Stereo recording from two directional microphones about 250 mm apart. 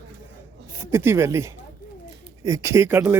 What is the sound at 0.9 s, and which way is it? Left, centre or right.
Speech, centre.